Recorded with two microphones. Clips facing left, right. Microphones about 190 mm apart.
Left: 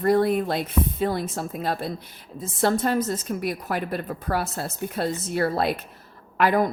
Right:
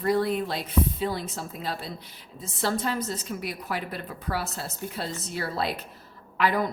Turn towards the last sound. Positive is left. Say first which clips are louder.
# left 4 dB
turn(degrees=50)  # may be behind; listen again after turning